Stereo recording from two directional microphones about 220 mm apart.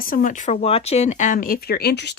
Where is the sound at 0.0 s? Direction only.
40° left (ahead or behind).